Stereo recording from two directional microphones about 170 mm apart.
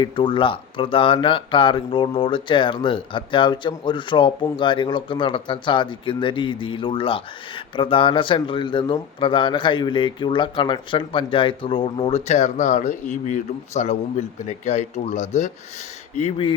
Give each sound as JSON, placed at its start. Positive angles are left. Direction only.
{"t": 0.0, "sound": "a man's voice", "side_deg": 30}